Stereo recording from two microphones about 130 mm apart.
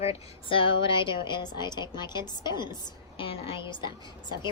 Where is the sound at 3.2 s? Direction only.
45° left (ahead or behind).